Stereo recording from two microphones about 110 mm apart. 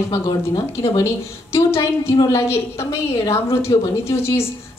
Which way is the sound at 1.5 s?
25° left (ahead or behind).